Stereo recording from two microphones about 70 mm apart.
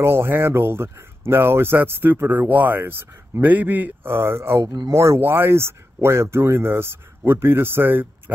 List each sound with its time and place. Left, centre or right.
0.0 s speech: right